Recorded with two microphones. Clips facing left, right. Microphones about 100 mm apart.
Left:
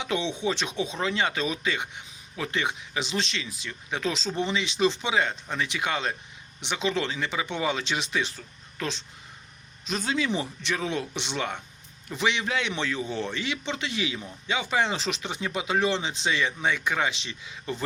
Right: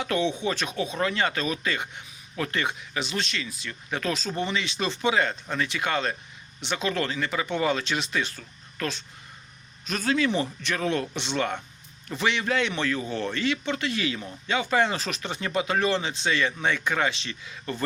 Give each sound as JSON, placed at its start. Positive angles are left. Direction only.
{"t": 0.0, "sound": "a man's voice", "side_deg": 20}
{"t": 3.6, "sound": "a man's voice", "side_deg": 15}
{"t": 9.8, "sound": "a man's voice", "side_deg": 20}